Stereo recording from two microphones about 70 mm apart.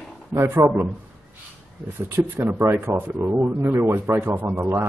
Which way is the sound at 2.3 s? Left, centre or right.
Right.